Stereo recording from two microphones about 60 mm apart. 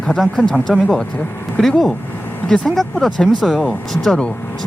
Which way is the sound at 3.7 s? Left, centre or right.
Centre.